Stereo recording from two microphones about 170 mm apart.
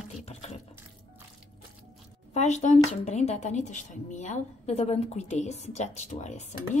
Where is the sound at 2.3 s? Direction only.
40° left (ahead or behind).